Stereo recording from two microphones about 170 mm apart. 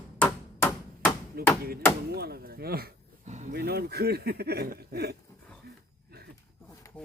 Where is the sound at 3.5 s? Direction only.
70° right (ahead or behind).